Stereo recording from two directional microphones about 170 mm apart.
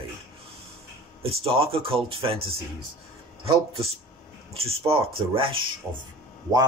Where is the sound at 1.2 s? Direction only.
35° right (ahead or behind).